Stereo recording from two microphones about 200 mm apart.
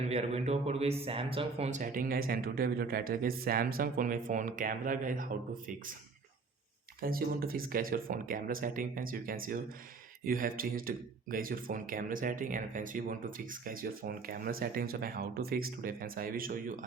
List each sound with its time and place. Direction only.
0.1 s speech: 30° right (ahead or behind)
7.0 s speech: 45° right (ahead or behind)